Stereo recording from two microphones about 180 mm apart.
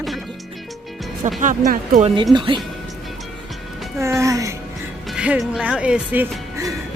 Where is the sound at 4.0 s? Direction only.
15° right (ahead or behind).